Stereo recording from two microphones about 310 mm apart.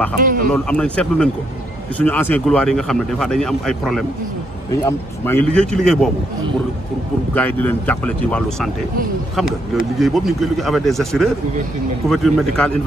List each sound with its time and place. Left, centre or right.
0.2 s speech: right
0.5 s speech: centre
7.3 s speech: centre